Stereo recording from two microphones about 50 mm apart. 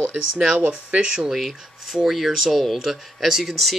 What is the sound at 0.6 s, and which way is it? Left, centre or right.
Speech, right.